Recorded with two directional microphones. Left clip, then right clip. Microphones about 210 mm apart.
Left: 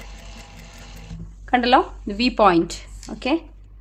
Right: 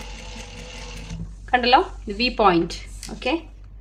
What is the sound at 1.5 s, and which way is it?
Speech, 50° left (ahead or behind).